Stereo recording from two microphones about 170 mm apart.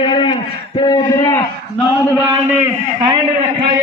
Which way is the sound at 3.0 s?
25° right (ahead or behind).